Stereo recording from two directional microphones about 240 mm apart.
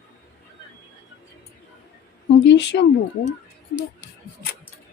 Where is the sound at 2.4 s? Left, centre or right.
Left.